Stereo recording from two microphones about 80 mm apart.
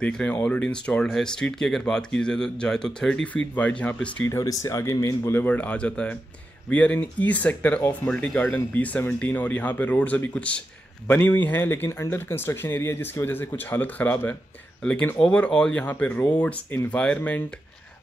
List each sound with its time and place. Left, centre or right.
0.0 s speech: centre
3.5 s speech: centre
4.2 s speech: left
4.5 s speech: left
5.3 s speech: left
14.8 s speech: centre